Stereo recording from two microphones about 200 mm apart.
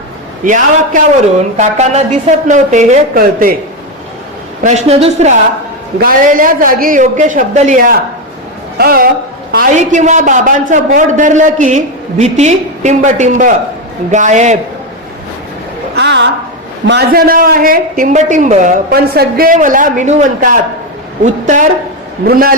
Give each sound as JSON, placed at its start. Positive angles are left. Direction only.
{"t": 0.4, "sound": "a man's voice", "side_deg": -40}
{"t": 4.6, "sound": "a man's voice", "side_deg": -35}
{"t": 6.0, "sound": "a man's voice", "side_deg": -45}
{"t": 9.7, "sound": "a man's voice", "side_deg": -35}
{"t": 16.0, "sound": "a sound", "side_deg": -60}
{"t": 16.8, "sound": "a man's voice", "side_deg": -55}
{"t": 22.2, "sound": "a man's voice", "side_deg": -50}